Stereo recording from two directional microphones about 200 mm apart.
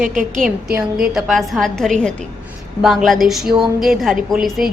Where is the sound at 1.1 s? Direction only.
Centre (ahead or behind).